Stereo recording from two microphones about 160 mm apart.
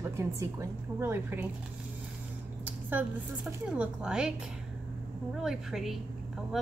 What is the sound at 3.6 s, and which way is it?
Speech, 5° right (ahead or behind).